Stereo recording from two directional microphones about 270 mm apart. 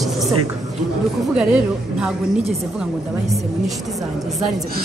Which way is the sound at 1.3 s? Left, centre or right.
Centre.